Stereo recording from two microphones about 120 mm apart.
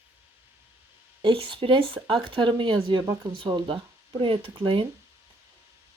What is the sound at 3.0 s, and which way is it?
Speech, 25° right (ahead or behind).